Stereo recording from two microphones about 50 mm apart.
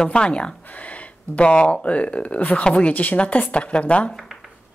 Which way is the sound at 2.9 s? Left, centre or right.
Left.